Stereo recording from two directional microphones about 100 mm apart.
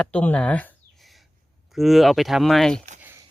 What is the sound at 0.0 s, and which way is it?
Speech, 10° left (ahead or behind).